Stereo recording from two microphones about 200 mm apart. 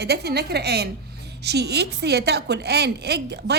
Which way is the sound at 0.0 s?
55° right (ahead or behind).